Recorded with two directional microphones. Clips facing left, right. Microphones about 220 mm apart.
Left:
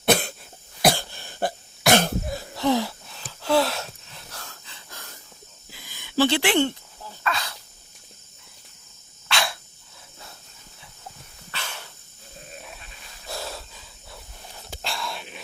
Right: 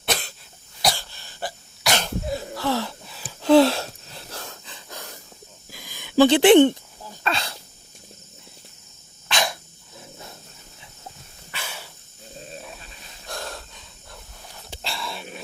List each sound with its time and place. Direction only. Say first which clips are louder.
0.0 s cough: left 7 dB; 55° left (ahead or behind)
2.6 s wheeze: left 5 dB; 15° left (ahead or behind)
3.4 s wheeze: right 7 dB; 25° right (ahead or behind)
5.8 s a sound: right 5 dB; 15° right (ahead or behind)
7.3 s sneeze: right 2 dB; 30° right (ahead or behind)
9.3 s dog: right 2 dB; 15° right (ahead or behind)
11.5 s dog: right 1 dB; 10° right (ahead or behind)
13.2 s a sound: even; 5° left (ahead or behind)
14.7 s whispering: even; centre (ahead or behind)